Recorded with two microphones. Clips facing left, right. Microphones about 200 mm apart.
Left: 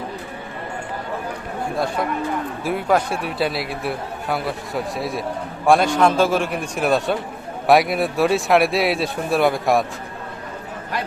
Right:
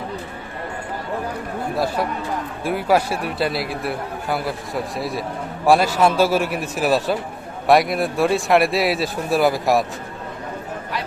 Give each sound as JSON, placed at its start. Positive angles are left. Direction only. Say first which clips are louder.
{"t": 2.6, "sound": "a man's voice", "louder": "right 1 dB", "side_deg": -5}